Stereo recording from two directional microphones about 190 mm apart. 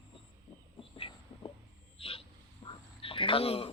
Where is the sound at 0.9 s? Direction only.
30° left (ahead or behind).